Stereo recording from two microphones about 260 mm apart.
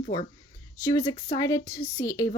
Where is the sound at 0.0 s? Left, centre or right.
Left.